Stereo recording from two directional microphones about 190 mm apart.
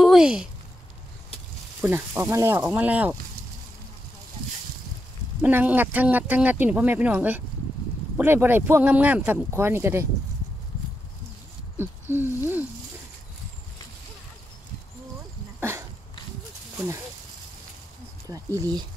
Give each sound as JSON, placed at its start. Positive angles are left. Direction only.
{"t": 0.0, "sound": "a sound", "side_deg": 0}
{"t": 1.8, "sound": "speech", "side_deg": -10}
{"t": 5.4, "sound": "speech", "side_deg": -10}
{"t": 11.7, "sound": "owl", "side_deg": -10}
{"t": 16.7, "sound": "speech", "side_deg": -15}
{"t": 18.2, "sound": "speech", "side_deg": -15}